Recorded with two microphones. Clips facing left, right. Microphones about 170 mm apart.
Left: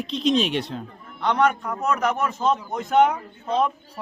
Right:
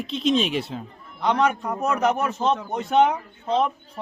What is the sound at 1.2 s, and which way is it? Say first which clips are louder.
A man's voice: even; 10° right (ahead or behind).